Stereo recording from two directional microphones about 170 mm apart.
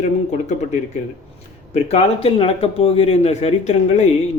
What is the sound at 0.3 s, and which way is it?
A man's voice, 45° left (ahead or behind).